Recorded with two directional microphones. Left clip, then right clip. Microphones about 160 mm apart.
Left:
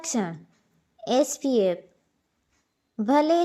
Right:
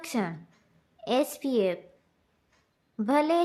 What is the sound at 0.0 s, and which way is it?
A woman's voice, 20° left (ahead or behind).